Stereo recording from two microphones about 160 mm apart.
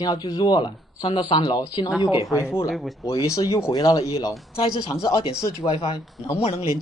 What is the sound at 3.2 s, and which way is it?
Speech, 20° left (ahead or behind).